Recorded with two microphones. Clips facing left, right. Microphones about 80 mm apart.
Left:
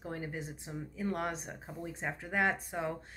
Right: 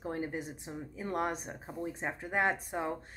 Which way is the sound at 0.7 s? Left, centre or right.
Right.